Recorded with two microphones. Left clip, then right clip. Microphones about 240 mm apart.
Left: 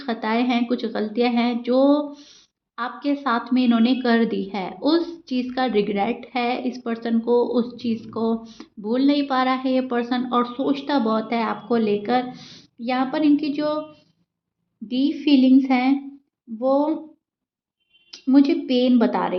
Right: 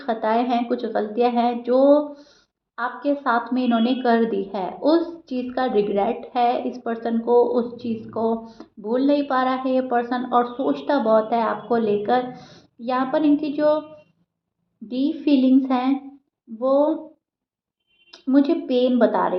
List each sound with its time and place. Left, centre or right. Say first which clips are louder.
0.0 s a woman's voice: right 2 dB; left
18.1 s a woman's voice: left 1 dB; left